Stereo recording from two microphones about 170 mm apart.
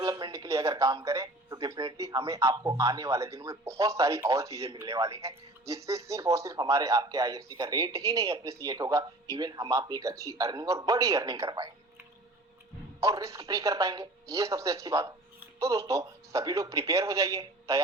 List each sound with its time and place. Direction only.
0.0 s speech: 20° right (ahead or behind)
13.0 s a woman's voice: 20° right (ahead or behind)